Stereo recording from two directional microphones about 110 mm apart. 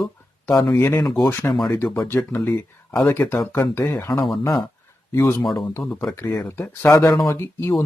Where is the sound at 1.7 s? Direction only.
20° left (ahead or behind).